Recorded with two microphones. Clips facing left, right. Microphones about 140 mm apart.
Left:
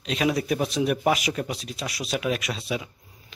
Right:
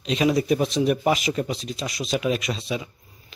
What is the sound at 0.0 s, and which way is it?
Speech, centre (ahead or behind).